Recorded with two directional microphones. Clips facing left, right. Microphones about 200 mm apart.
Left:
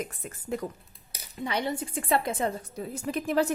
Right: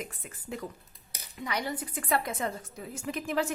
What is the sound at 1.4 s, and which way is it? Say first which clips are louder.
A woman's voice: left 4 dB; 25° left (ahead or behind).